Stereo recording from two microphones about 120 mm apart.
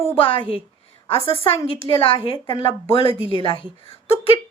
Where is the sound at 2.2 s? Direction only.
45° left (ahead or behind).